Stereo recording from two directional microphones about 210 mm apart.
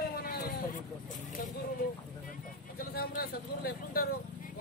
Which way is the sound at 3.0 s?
45° left (ahead or behind).